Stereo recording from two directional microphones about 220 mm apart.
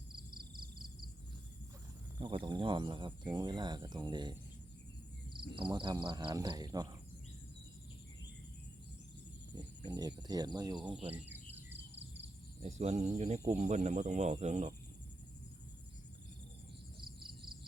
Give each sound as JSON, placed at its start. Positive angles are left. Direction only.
{"t": 2.1, "sound": "speech", "side_deg": -20}
{"t": 5.3, "sound": "cricket", "side_deg": -20}
{"t": 5.7, "sound": "speech", "side_deg": -20}
{"t": 9.6, "sound": "speech", "side_deg": -20}
{"t": 12.6, "sound": "speech", "side_deg": -30}